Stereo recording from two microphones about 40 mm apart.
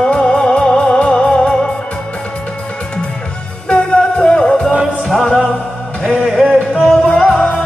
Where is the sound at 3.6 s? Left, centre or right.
Left.